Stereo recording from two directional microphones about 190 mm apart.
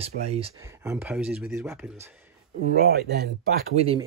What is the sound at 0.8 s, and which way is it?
Speech, 10° right (ahead or behind).